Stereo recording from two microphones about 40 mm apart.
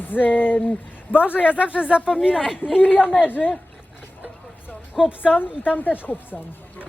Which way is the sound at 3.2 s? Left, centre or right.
Left.